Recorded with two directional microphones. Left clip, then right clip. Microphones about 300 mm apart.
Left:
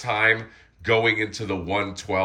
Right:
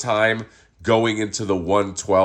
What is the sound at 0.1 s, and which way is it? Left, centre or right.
Speech, centre.